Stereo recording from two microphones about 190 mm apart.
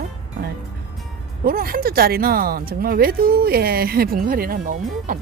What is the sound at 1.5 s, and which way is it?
Speech, 50° right (ahead or behind).